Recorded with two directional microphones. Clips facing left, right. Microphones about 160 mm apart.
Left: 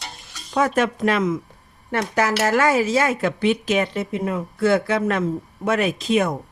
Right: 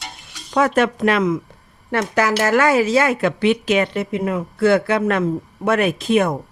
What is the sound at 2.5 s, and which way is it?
Speech, 75° right (ahead or behind).